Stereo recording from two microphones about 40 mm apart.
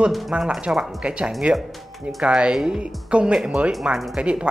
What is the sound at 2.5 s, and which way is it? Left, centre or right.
Speech, centre.